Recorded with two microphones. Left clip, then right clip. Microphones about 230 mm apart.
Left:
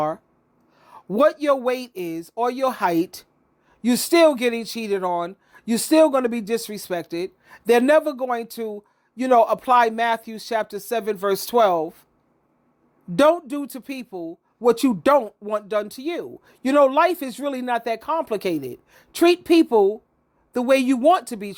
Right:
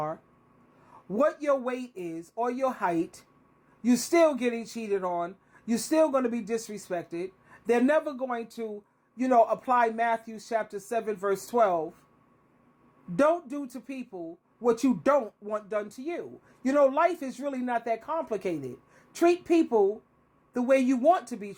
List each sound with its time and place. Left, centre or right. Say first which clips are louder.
1.1 s speech: left 7 dB; left
13.1 s speech: left 7 dB; left